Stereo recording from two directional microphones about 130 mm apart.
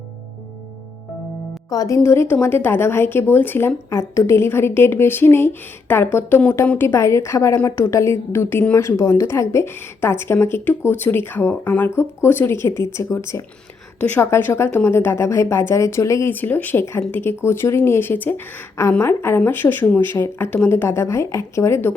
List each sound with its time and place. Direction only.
1.7 s a woman's voice: 25° left (ahead or behind)